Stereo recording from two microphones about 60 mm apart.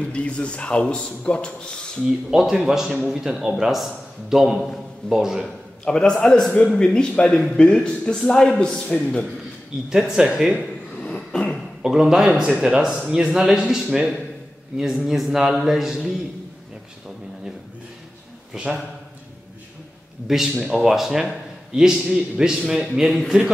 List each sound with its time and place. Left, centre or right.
0.1 s a man's voice: centre
2.0 s a man's voice: centre
5.9 s a man's voice: centre
9.8 s a man's voice: centre
11.0 s a sound: centre
11.8 s a man's voice: centre
15.0 s a man's voice: centre
20.3 s a man's voice: centre